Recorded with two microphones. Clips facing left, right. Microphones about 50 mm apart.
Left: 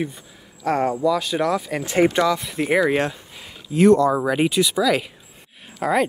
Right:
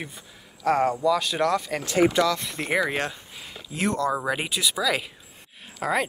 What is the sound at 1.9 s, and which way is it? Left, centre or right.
Speech, left.